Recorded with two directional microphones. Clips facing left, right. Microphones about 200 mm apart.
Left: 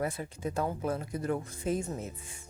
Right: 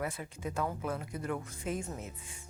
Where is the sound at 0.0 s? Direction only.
35° left (ahead or behind).